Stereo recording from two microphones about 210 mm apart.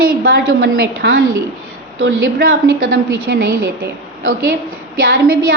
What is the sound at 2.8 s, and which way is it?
Speech, 70° right (ahead or behind).